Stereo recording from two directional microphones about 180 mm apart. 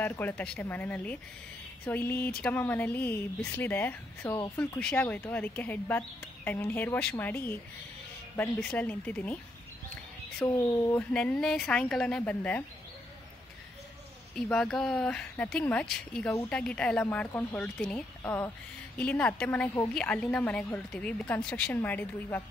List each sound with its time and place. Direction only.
0.0 s speech: 10° left (ahead or behind)
8.5 s speech: 5° left (ahead or behind)
10.4 s speech: 15° left (ahead or behind)
11.1 s a woman's voice: 5° left (ahead or behind)
14.3 s a woman's voice: 5° left (ahead or behind)